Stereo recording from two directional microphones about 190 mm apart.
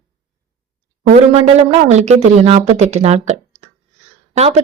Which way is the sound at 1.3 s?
30° right (ahead or behind).